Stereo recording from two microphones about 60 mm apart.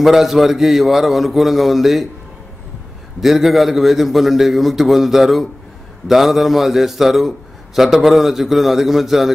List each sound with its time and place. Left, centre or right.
0.0 s a man's voice: centre
3.2 s a man's voice: centre